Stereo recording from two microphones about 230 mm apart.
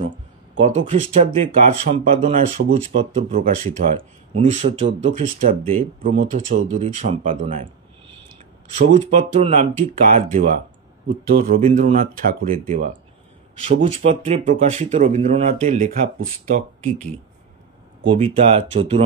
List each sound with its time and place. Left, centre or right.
0.6 s speech: right
8.7 s speech: right
18.0 s speech: right